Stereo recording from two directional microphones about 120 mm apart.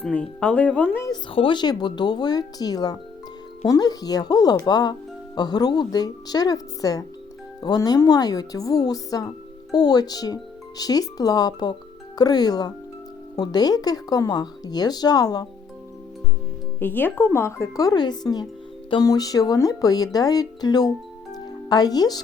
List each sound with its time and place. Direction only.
0.0 s speech: 10° left (ahead or behind)
1.3 s speech: 45° left (ahead or behind)
16.8 s speech: 15° left (ahead or behind); by 20.9 s 35° left (ahead or behind)
21.3 s music: 35° left (ahead or behind)